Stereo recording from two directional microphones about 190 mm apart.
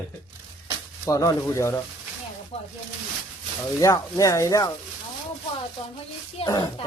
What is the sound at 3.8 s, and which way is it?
Speech, 15° left (ahead or behind).